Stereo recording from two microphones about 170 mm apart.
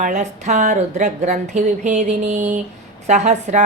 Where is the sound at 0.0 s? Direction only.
45° right (ahead or behind).